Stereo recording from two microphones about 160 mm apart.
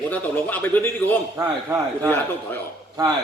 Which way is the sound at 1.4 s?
20° right (ahead or behind).